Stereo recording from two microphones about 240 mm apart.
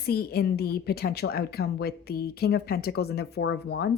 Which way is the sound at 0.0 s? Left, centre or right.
Left.